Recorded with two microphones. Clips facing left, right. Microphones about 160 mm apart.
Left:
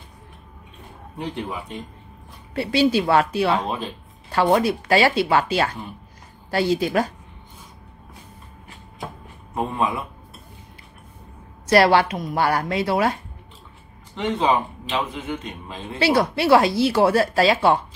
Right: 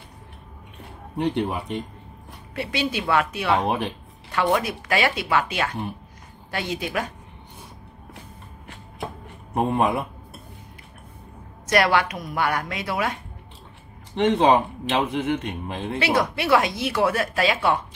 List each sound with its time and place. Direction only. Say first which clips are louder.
1.1 s speech: right 5 dB; 70° right (ahead or behind)
2.5 s speech: left 8 dB; 30° left (ahead or behind)
3.6 s speech: right 3 dB; 70° right (ahead or behind)
4.6 s speech: left 5 dB; 30° left (ahead or behind)
9.5 s speech: right 3 dB; 55° right (ahead or behind)
11.6 s speech: left 4 dB; 30° left (ahead or behind)
14.1 s speech: right 3 dB; 70° right (ahead or behind)
16.0 s speech: left 4 dB; 30° left (ahead or behind)